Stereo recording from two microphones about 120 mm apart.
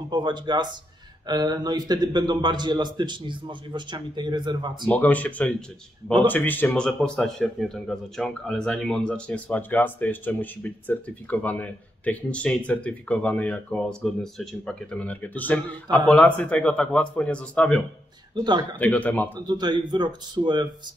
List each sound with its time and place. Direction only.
0.1 s speech: 40° right (ahead or behind)
4.8 s speech: 15° left (ahead or behind)
18.3 s a man's voice: 40° right (ahead or behind)
18.8 s speech: 15° left (ahead or behind)
19.3 s speech: 35° right (ahead or behind)